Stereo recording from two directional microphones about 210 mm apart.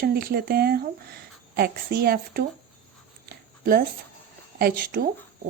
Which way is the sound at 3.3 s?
45° right (ahead or behind).